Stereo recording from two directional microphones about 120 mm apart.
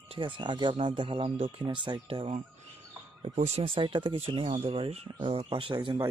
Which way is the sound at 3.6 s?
45° right (ahead or behind).